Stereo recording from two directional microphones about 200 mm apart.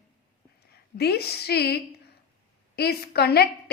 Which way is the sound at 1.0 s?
55° left (ahead or behind).